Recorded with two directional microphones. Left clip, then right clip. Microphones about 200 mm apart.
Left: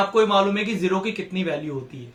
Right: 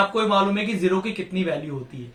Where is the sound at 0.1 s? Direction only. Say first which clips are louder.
Left 2 dB; 20° left (ahead or behind).